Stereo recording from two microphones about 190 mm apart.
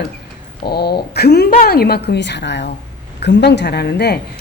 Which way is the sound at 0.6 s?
55° left (ahead or behind).